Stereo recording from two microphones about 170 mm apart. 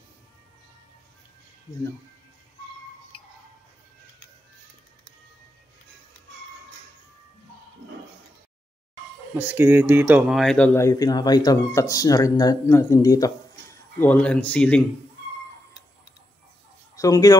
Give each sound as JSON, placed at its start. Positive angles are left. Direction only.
{"t": 9.3, "sound": "speech", "side_deg": -10}
{"t": 13.9, "sound": "speech", "side_deg": 10}
{"t": 16.9, "sound": "speech", "side_deg": 20}